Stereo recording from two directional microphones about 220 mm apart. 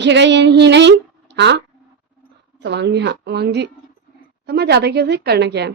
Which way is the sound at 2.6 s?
50° right (ahead or behind).